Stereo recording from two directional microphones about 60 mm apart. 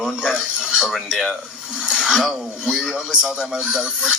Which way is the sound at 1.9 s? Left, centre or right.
Centre.